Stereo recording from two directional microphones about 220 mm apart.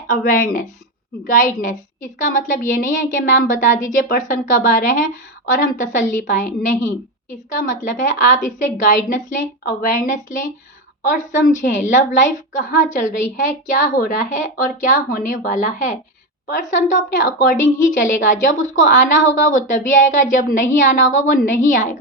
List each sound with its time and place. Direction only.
0.1 s a woman's voice: 40° left (ahead or behind)